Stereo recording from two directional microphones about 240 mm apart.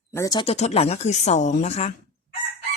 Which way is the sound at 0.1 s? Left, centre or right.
Centre.